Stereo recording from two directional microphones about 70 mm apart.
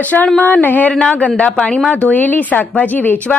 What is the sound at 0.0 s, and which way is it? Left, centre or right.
A woman's voice, left.